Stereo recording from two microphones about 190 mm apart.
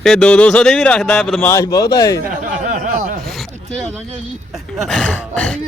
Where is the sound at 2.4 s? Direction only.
45° right (ahead or behind).